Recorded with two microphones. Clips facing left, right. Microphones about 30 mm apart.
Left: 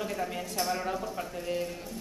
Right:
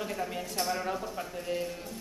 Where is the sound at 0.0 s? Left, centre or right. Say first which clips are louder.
Left 1 dB; centre.